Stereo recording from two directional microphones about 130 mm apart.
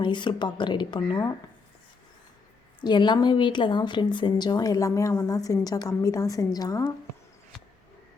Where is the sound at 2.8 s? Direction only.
35° left (ahead or behind).